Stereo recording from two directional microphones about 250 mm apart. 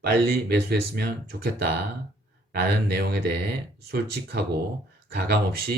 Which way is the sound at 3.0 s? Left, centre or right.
Right.